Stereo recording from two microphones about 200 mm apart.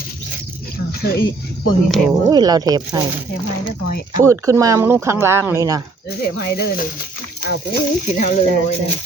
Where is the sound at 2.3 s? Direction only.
20° right (ahead or behind).